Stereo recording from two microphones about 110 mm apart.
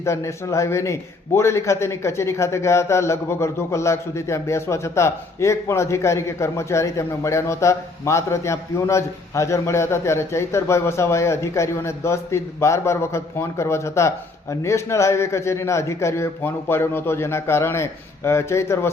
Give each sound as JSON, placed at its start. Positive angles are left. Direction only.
{"t": 0.0, "sound": "a man's voice", "side_deg": 25}